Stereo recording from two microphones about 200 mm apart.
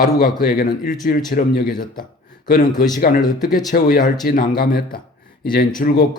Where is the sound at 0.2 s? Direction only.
50° left (ahead or behind).